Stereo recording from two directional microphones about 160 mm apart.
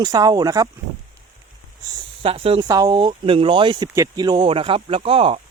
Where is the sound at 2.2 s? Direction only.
35° right (ahead or behind).